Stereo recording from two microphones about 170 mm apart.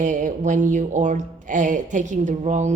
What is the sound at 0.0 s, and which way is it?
Speech, 50° right (ahead or behind).